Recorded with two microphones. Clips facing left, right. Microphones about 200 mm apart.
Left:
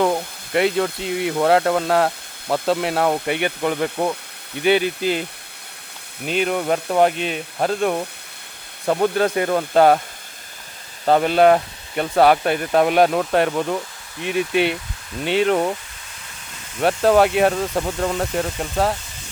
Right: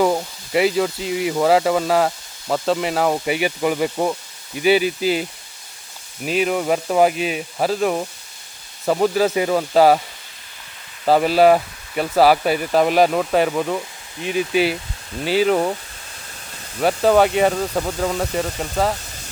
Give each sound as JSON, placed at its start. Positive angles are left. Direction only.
{"t": 0.0, "sound": "speech", "side_deg": -5}
{"t": 6.2, "sound": "speech", "side_deg": -5}
{"t": 11.0, "sound": "speech", "side_deg": -5}
{"t": 16.8, "sound": "speech", "side_deg": 0}